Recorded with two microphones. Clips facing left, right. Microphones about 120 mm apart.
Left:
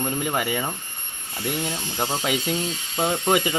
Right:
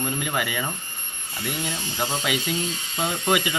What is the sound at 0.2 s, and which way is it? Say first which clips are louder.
Speech: left 2 dB; 40° left (ahead or behind).